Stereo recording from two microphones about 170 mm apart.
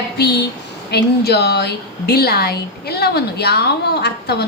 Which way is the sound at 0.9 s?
75° left (ahead or behind).